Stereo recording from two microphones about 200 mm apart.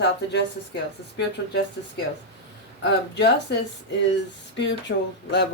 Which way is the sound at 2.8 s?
60° left (ahead or behind).